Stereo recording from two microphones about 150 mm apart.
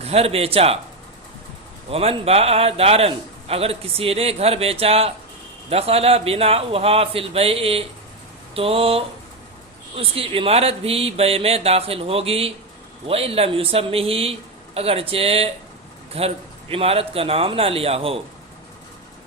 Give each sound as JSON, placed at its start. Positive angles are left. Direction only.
{"t": 0.0, "sound": "speech", "side_deg": -40}
{"t": 1.9, "sound": "speech", "side_deg": -40}